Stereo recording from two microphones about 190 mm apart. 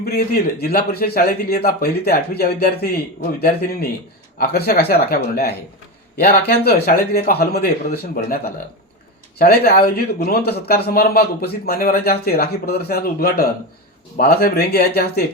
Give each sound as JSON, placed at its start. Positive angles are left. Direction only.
{"t": 0.0, "sound": "a man's voice", "side_deg": 55}